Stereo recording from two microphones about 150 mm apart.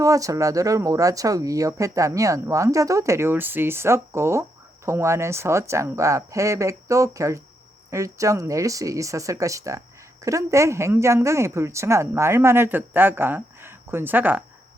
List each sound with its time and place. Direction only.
0.0 s speech: 20° right (ahead or behind)